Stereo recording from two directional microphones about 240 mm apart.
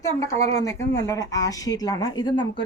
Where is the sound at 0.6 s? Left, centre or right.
Centre.